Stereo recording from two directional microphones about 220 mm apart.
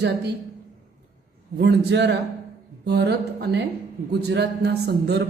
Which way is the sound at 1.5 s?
50° right (ahead or behind).